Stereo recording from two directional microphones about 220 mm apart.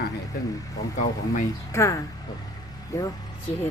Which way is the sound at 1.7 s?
15° left (ahead or behind).